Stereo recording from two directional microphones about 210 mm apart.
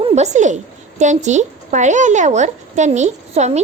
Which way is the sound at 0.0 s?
30° right (ahead or behind).